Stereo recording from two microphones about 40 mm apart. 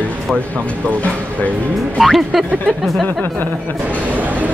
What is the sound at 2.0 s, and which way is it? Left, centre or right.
Speech, centre.